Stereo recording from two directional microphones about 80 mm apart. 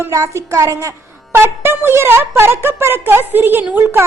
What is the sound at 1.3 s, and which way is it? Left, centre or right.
Speech, right.